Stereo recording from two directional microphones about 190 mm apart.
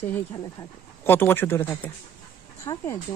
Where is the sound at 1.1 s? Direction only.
10° left (ahead or behind).